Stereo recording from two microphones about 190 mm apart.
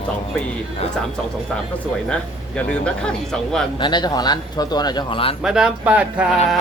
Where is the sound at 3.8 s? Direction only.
25° left (ahead or behind).